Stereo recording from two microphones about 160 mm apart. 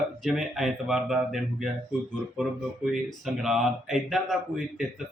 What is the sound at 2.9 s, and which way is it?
Speech, centre (ahead or behind).